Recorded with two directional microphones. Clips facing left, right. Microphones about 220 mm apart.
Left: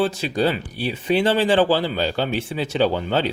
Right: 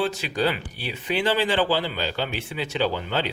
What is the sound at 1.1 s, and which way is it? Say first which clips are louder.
Speech: left 5 dB; 45° left (ahead or behind).